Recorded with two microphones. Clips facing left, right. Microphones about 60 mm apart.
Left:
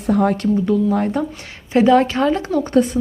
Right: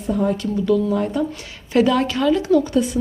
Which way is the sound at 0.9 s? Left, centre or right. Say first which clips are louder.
Left 1 dB; left.